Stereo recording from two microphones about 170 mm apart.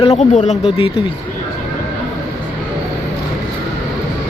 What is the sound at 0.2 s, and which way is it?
Speech, 45° left (ahead or behind).